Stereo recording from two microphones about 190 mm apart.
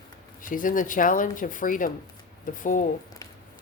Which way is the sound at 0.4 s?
45° left (ahead or behind).